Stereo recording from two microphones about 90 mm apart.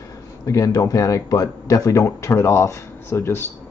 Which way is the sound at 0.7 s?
40° left (ahead or behind).